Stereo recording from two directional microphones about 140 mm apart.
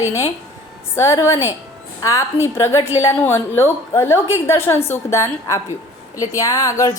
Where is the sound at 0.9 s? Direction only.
20° left (ahead or behind).